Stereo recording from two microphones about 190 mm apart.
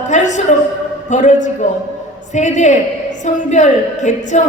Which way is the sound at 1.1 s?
40° left (ahead or behind).